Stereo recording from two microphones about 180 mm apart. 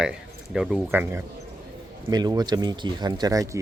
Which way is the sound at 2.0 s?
20° right (ahead or behind).